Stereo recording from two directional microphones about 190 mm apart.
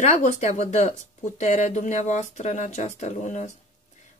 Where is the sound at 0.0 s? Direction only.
40° left (ahead or behind).